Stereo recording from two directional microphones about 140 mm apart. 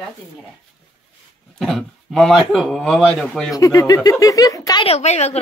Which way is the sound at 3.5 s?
25° left (ahead or behind).